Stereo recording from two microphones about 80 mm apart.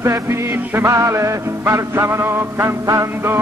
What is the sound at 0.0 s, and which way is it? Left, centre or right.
Music, right.